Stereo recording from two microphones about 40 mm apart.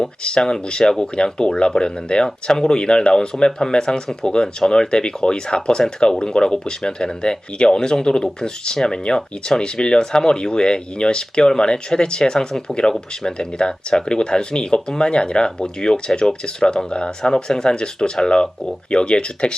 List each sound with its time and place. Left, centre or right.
0.0 s speech: centre